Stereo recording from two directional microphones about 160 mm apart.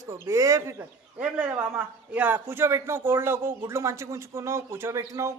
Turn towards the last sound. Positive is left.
turn(degrees=-20)  # may be behind; listen again after turning